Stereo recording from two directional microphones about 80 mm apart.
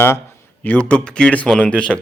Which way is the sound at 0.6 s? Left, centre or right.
Centre.